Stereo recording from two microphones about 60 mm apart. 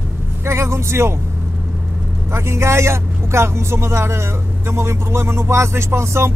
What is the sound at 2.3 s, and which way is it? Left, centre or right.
Speech, right.